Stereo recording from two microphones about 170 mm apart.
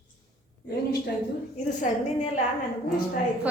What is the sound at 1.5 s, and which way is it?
Speech, 40° left (ahead or behind).